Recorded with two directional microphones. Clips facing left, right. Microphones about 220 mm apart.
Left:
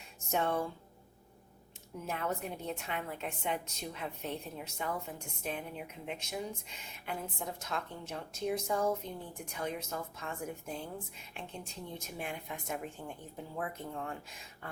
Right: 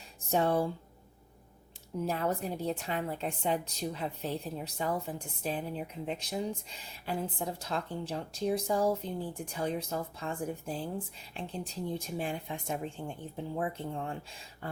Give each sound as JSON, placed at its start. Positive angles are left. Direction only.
{"t": 0.3, "sound": "speech", "side_deg": -35}
{"t": 2.0, "sound": "speech", "side_deg": -35}